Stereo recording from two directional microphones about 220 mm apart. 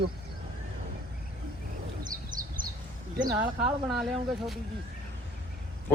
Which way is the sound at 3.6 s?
Centre (ahead or behind).